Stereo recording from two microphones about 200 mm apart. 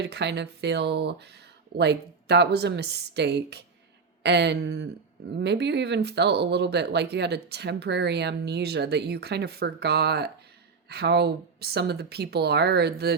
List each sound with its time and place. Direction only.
0.0 s speech: 60° right (ahead or behind)